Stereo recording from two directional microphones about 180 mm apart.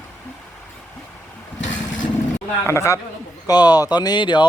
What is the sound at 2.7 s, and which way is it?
Speech, 15° left (ahead or behind).